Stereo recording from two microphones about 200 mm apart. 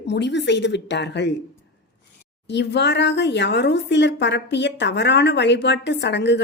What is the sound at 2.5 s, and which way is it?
A woman's voice, 60° left (ahead or behind).